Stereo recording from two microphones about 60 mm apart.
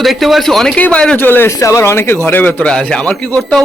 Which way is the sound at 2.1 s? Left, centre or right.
Left.